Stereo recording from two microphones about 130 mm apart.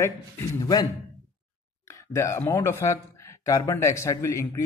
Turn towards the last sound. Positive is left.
turn(degrees=25)  # may be behind; listen again after turning